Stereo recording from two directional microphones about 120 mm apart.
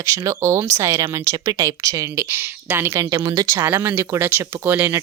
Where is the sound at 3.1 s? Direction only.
35° right (ahead or behind).